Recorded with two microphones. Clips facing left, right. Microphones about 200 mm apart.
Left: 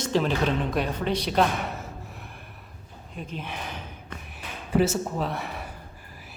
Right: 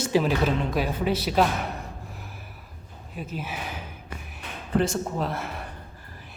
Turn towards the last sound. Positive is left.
turn(degrees=0)  # may be behind; listen again after turning